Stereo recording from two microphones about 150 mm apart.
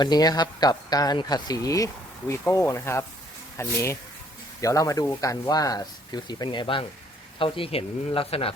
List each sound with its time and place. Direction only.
0.0 s speech: 25° left (ahead or behind)